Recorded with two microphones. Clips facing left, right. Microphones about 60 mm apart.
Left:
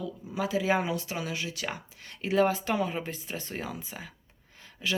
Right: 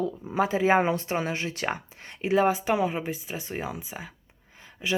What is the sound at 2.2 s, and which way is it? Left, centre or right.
Speech, centre.